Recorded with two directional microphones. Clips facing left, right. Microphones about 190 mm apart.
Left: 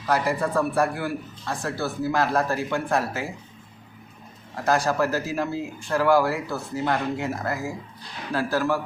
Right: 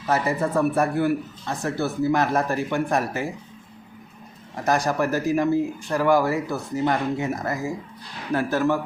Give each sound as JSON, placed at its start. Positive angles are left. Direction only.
{"t": 0.1, "sound": "a man's voice", "side_deg": -20}
{"t": 4.5, "sound": "a man's voice", "side_deg": -20}